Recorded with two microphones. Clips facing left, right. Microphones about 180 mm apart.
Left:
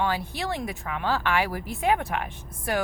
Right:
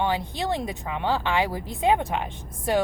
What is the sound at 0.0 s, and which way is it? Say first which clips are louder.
Speech: right 2 dB; 20° right (ahead or behind).